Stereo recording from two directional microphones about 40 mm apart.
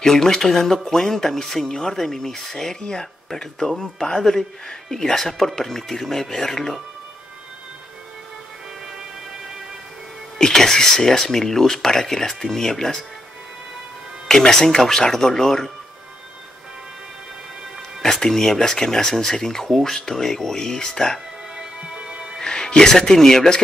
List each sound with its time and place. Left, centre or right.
0.0 s speech: centre
10.4 s speech: centre
14.2 s speech: centre
18.0 s speech: centre
21.5 s music: centre
22.4 s speech: centre